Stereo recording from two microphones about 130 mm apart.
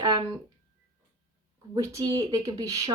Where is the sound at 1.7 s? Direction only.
25° right (ahead or behind).